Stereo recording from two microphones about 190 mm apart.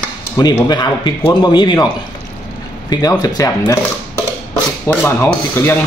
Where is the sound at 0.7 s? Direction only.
25° left (ahead or behind).